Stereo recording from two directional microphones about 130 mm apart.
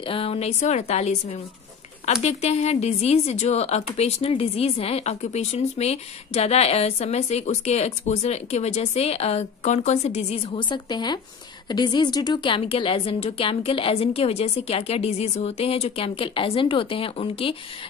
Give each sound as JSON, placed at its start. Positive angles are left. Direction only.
{"t": 0.0, "sound": "a woman's voice", "side_deg": 45}